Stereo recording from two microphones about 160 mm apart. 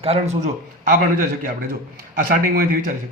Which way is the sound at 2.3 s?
70° right (ahead or behind).